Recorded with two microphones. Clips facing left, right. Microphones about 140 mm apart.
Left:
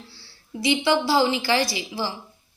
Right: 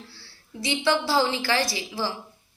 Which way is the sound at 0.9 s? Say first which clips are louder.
Left 1 dB; 15° left (ahead or behind).